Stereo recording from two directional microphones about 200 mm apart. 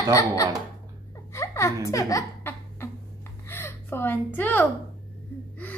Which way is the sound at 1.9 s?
15° left (ahead or behind).